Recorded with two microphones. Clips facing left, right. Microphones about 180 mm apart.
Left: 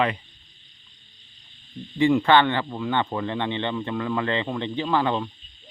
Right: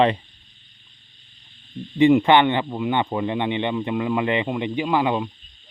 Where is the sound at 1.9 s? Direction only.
20° right (ahead or behind).